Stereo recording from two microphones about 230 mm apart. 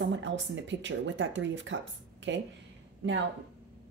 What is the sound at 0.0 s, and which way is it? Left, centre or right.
Speech, right.